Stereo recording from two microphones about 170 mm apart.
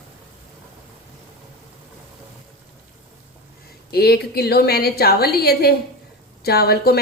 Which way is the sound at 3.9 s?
65° left (ahead or behind).